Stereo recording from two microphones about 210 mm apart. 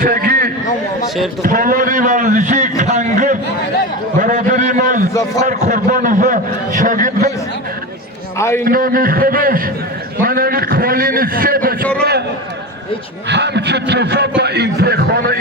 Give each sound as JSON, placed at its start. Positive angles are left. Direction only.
{"t": 0.0, "sound": "a sound", "side_deg": -45}
{"t": 1.0, "sound": "a man's voice", "side_deg": 0}
{"t": 1.4, "sound": "a man's voice", "side_deg": -40}
{"t": 8.4, "sound": "a man's voice", "side_deg": 15}
{"t": 8.6, "sound": "a man's voice", "side_deg": -45}
{"t": 13.2, "sound": "a man's voice", "side_deg": -55}